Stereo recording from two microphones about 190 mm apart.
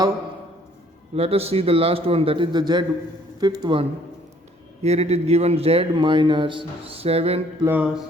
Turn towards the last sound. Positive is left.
turn(degrees=-10)  # may be behind; listen again after turning